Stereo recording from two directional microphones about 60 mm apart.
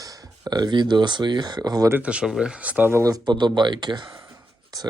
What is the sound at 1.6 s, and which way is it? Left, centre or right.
Speech, right.